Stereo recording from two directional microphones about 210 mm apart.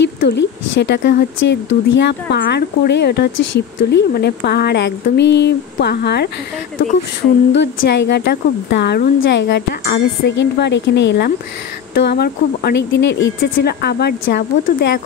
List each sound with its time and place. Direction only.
0.0 s a woman's voice: 55° left (ahead or behind)
7.5 s a woman's voice: 55° left (ahead or behind)